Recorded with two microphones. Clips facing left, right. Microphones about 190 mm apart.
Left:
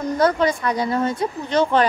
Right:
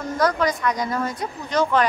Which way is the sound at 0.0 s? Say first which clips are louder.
Left 3 dB; 25° left (ahead or behind).